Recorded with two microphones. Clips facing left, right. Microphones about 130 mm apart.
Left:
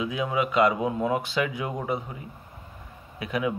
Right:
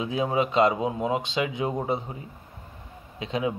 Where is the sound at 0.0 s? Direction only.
30° right (ahead or behind).